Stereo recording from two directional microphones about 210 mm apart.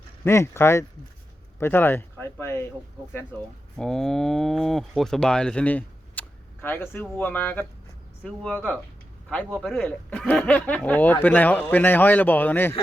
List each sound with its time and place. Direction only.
0.3 s speech: 10° left (ahead or behind)
3.8 s cattle: centre (ahead or behind)
8.2 s speech: 5° left (ahead or behind)